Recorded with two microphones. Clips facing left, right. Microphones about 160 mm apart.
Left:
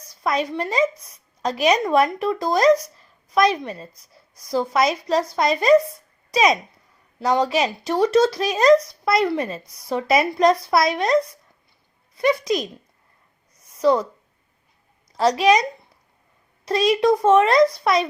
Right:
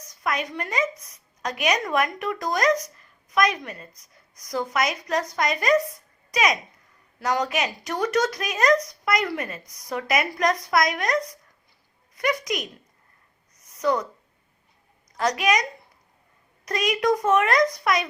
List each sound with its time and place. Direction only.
0.0 s a woman's voice: 30° left (ahead or behind)
13.6 s a sound: 30° left (ahead or behind)
15.1 s a woman's voice: 30° left (ahead or behind)
16.6 s a woman's voice: 30° left (ahead or behind)